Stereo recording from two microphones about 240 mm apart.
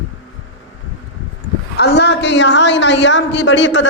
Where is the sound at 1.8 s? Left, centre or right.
Left.